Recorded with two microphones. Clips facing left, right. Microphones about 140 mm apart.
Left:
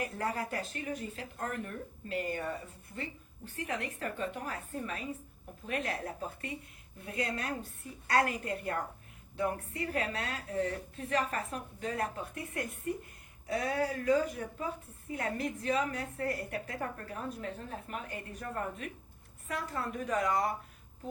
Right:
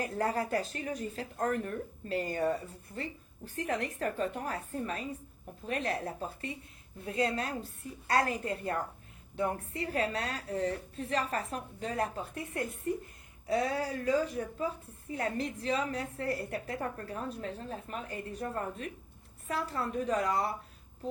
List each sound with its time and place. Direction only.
0.0 s a woman's voice: 35° right (ahead or behind)
7.0 s a woman's voice: 30° right (ahead or behind)